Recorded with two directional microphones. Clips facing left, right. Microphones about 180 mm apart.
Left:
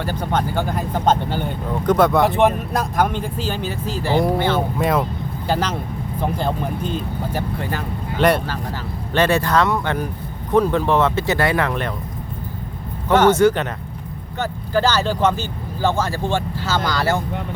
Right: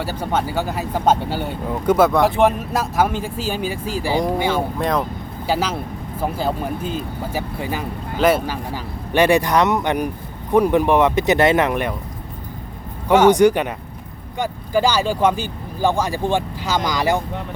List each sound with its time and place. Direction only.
0.0 s speech: 5° right (ahead or behind)
4.8 s speech: 5° left (ahead or behind)
5.5 s speech: 10° right (ahead or behind)
13.1 s speech: 10° right (ahead or behind)